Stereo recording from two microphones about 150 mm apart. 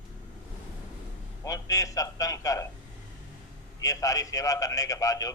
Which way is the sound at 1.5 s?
25° left (ahead or behind).